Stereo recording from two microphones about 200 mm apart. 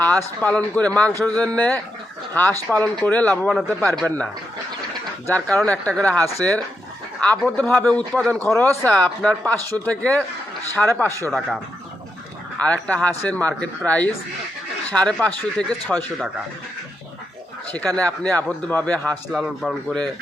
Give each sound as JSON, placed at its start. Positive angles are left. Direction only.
{"t": 0.4, "sound": "a man's voice", "side_deg": 5}
{"t": 5.3, "sound": "a man's voice", "side_deg": 5}
{"t": 7.3, "sound": "a man's voice", "side_deg": 5}
{"t": 17.7, "sound": "a man's voice", "side_deg": 5}